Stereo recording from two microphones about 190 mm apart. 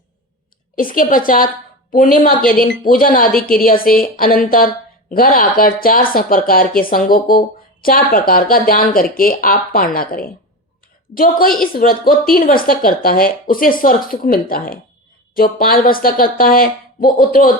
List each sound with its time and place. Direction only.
0.8 s speech: 45° left (ahead or behind)